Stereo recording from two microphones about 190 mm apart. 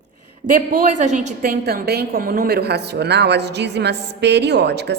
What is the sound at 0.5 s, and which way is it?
A woman's voice, 45° right (ahead or behind).